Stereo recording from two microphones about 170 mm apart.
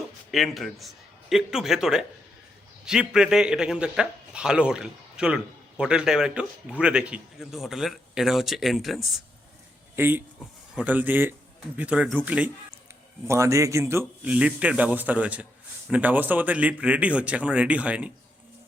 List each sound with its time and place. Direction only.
0.3 s a man's voice: centre (ahead or behind)
9.9 s speech: 10° right (ahead or behind)